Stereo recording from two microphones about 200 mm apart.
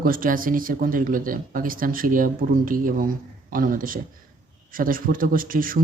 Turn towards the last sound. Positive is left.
turn(degrees=-45)  # may be behind; listen again after turning